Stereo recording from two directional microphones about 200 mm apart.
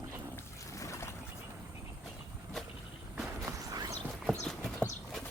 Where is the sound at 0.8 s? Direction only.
15° left (ahead or behind).